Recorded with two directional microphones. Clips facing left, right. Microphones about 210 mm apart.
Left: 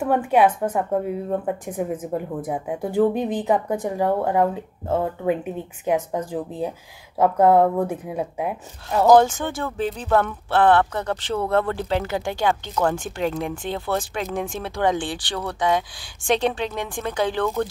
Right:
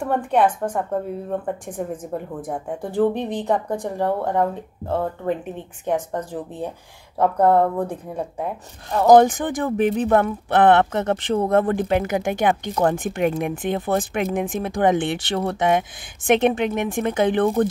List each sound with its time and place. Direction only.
0.0 s a woman's voice: 5° left (ahead or behind)
9.0 s speech: 20° right (ahead or behind)